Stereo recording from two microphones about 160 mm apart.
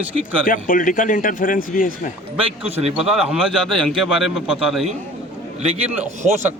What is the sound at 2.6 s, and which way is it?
Speech, 40° right (ahead or behind).